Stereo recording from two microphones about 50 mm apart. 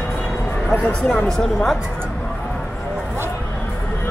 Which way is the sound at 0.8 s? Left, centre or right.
Centre.